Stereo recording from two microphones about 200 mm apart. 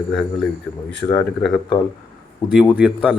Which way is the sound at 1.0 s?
20° left (ahead or behind).